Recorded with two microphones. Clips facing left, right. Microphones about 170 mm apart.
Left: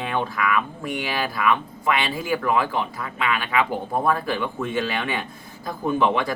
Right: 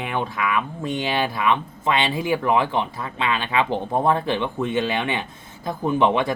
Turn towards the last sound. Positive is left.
turn(degrees=-20)  # may be behind; listen again after turning